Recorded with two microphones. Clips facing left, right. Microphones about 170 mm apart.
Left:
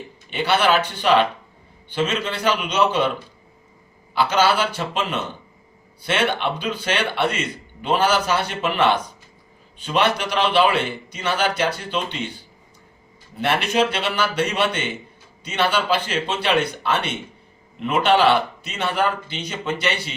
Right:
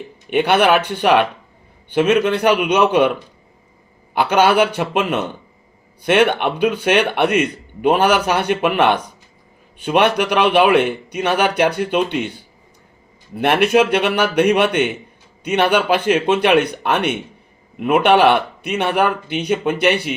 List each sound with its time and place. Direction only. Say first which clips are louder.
0.3 s speech: right 5 dB; 60° right (ahead or behind)
4.1 s speech: right 4 dB; 55° right (ahead or behind)
13.4 s speech: right 6 dB; 60° right (ahead or behind)